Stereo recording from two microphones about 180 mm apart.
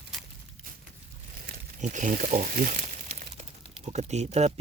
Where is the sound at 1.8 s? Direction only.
45° right (ahead or behind).